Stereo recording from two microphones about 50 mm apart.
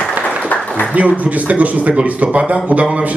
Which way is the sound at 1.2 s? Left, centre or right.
Right.